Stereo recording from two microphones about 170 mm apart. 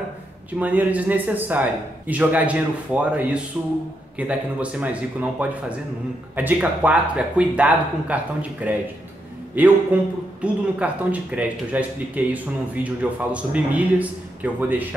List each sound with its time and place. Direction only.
0.6 s speech: 10° right (ahead or behind)